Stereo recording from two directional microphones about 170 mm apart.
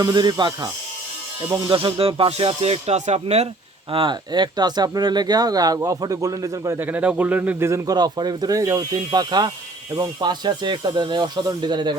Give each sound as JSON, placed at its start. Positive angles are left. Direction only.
{"t": 0.0, "sound": "speech", "side_deg": -25}
{"t": 3.9, "sound": "speech", "side_deg": -25}